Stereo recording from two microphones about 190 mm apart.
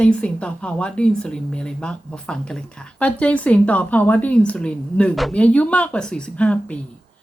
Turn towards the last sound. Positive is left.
turn(degrees=5)  # may be behind; listen again after turning